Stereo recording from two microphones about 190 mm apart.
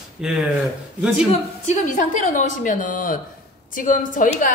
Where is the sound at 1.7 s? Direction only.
40° left (ahead or behind).